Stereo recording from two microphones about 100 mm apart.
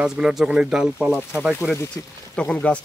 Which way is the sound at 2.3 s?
10° left (ahead or behind).